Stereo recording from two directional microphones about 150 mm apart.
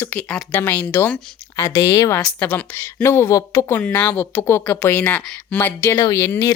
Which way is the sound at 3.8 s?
10° left (ahead or behind).